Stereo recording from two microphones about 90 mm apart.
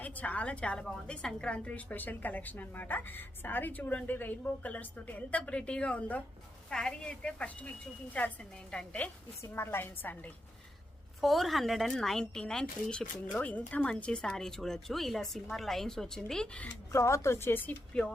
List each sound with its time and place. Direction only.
0.0 s a woman's voice: 15° left (ahead or behind)
9.4 s a woman's voice: 25° left (ahead or behind)
11.2 s speech: centre (ahead or behind)
13.3 s speech: 15° left (ahead or behind)
16.9 s a woman's voice: 30° left (ahead or behind); by 18.1 s 15° left (ahead or behind)